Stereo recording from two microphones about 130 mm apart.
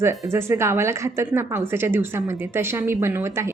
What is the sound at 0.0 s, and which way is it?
A woman's voice, 20° right (ahead or behind).